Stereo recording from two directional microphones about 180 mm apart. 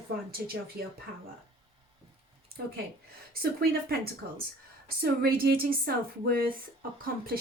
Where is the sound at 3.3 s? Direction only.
60° right (ahead or behind).